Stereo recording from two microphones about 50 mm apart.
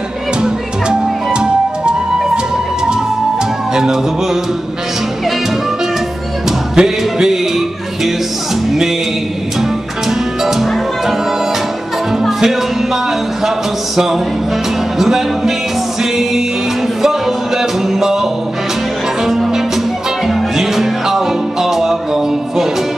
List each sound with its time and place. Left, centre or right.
0.4 s music: centre
6.7 s music: centre
10.4 s music: centre
12.2 s music: centre
17.6 s music: centre
19.2 s music: centre